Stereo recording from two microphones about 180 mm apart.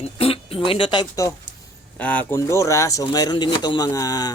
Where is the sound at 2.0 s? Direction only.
10° left (ahead or behind).